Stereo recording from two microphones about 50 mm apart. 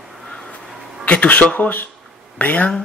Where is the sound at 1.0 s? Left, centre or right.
Left.